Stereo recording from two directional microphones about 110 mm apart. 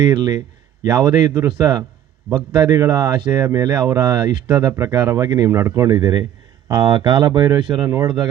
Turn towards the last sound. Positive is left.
turn(degrees=-40)  # may be behind; listen again after turning